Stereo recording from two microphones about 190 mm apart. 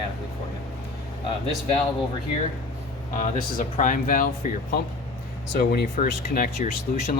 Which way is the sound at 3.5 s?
45° left (ahead or behind).